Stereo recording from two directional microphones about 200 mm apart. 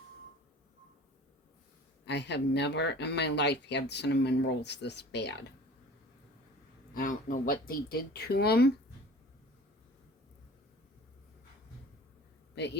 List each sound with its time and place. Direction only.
2.0 s speech: 60° left (ahead or behind)
6.9 s speech: 45° left (ahead or behind)
12.5 s a man's voice: 60° left (ahead or behind)